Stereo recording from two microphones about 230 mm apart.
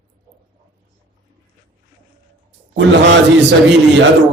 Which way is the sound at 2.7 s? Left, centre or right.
Right.